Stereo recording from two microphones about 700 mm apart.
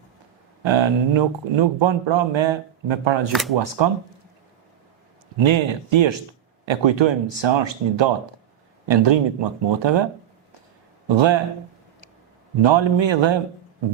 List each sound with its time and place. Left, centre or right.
0.6 s speech: right
3.3 s speech: centre
3.8 s speech: right
5.4 s speech: right
12.6 s speech: right